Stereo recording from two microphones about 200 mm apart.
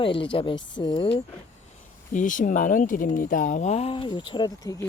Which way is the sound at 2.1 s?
40° left (ahead or behind).